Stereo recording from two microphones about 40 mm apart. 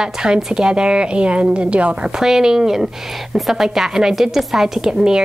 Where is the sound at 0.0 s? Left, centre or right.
Centre.